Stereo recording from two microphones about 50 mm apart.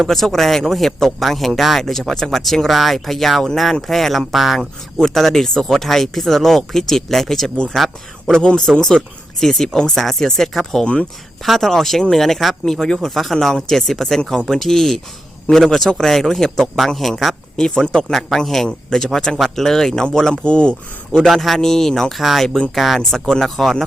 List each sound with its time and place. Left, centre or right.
0.1 s speech: centre
17.6 s speech: centre
21.3 s speech: centre